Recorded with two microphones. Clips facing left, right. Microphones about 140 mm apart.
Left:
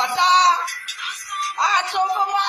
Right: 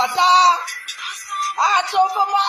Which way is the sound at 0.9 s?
35° right (ahead or behind).